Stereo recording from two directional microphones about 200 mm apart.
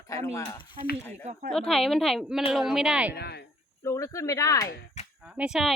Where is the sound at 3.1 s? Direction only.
55° left (ahead or behind).